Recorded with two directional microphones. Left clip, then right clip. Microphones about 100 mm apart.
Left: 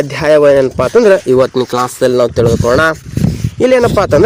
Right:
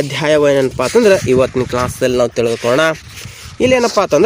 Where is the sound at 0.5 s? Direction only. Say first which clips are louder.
Left 4 dB; 35° right (ahead or behind).